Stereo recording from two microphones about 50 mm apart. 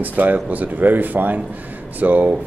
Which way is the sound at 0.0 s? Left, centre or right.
Right.